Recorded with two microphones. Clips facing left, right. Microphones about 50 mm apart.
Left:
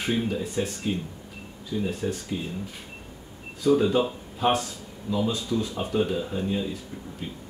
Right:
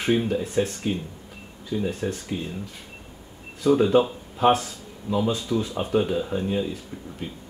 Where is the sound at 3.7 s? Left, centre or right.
Right; by 6.6 s centre.